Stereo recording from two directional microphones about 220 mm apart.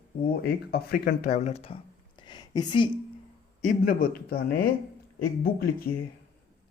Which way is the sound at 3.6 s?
40° left (ahead or behind).